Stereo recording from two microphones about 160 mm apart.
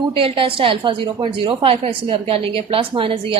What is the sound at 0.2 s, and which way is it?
A woman's voice, 35° right (ahead or behind).